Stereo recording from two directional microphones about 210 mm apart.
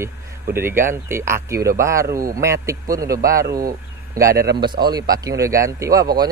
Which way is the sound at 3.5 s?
45° right (ahead or behind).